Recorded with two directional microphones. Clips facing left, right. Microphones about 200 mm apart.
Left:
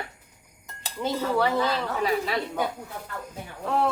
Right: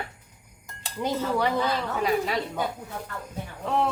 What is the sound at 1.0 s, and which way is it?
Speech, 15° right (ahead or behind).